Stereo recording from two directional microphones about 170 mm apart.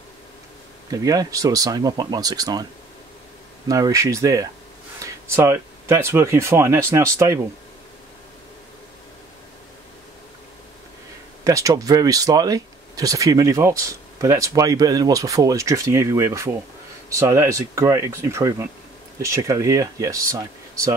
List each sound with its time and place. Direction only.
0.8 s speech: 20° right (ahead or behind)
3.6 s speech: 20° right (ahead or behind)
11.4 s speech: 20° right (ahead or behind)